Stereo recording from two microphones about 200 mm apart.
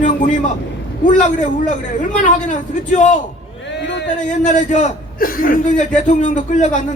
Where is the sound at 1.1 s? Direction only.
40° left (ahead or behind).